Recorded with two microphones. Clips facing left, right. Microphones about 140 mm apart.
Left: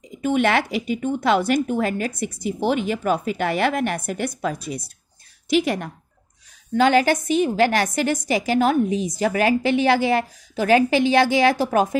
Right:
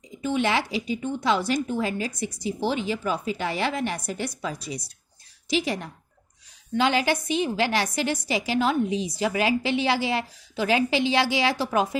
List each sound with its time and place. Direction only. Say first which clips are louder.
0.2 s a woman's voice: left 5 dB; 55° left (ahead or behind)